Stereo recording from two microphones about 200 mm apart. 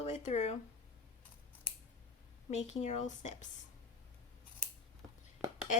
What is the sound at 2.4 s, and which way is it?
A woman's voice, 35° left (ahead or behind).